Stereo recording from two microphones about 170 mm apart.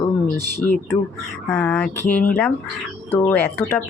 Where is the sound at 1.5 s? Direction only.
10° left (ahead or behind).